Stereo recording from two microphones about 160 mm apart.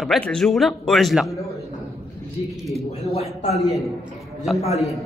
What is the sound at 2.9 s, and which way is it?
Speech, 40° left (ahead or behind).